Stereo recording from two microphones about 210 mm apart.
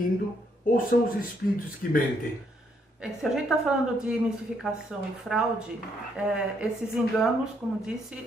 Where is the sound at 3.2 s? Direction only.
5° right (ahead or behind).